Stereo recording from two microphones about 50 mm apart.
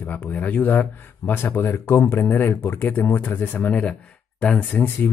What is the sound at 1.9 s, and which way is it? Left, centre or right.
Speech, left.